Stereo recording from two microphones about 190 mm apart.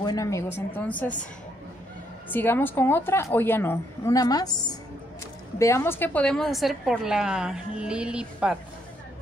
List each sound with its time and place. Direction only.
0.0 s a woman's voice: 20° left (ahead or behind)
2.3 s a woman's voice: 10° left (ahead or behind); by 8.5 s 5° right (ahead or behind)